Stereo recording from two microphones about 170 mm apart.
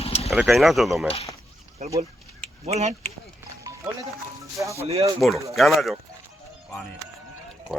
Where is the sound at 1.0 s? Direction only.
35° left (ahead or behind).